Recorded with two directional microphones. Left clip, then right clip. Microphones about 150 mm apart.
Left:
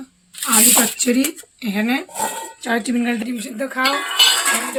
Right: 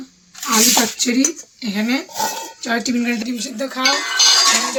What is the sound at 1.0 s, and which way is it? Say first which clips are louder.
Speech: even; 50° left (ahead or behind).